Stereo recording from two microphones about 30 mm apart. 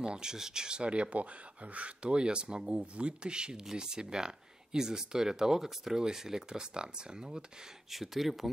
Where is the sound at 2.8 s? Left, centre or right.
Right.